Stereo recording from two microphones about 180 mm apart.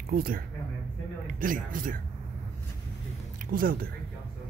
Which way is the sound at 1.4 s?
50° right (ahead or behind).